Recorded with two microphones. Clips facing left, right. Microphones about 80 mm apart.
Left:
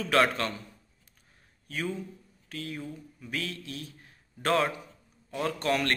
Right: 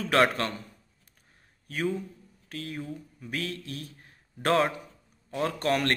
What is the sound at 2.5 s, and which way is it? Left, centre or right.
A man's voice, right.